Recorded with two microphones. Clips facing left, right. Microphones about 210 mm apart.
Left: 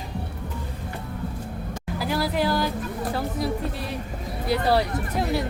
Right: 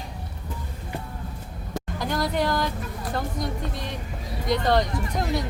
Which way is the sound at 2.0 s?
5° left (ahead or behind).